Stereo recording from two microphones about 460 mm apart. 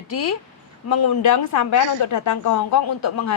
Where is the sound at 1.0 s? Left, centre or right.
Left.